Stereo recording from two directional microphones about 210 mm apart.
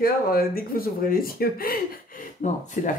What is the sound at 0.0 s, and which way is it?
Speech, 45° left (ahead or behind).